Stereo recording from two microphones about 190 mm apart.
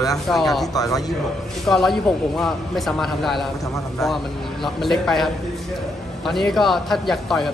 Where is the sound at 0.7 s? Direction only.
20° left (ahead or behind).